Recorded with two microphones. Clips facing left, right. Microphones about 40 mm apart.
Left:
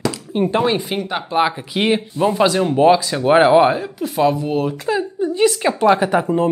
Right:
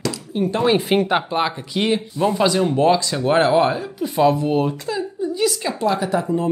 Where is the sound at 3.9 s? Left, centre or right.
Centre.